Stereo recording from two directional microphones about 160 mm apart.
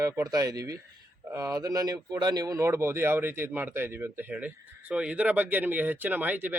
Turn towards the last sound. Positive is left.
turn(degrees=-10)  # may be behind; listen again after turning